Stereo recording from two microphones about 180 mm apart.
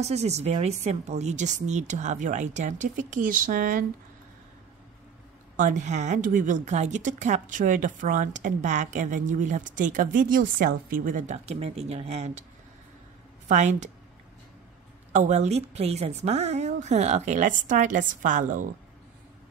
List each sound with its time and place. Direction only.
0.0 s speech: 35° right (ahead or behind)
5.6 s a woman's voice: 40° right (ahead or behind)
13.5 s speech: 40° right (ahead or behind)
15.1 s speech: 40° right (ahead or behind)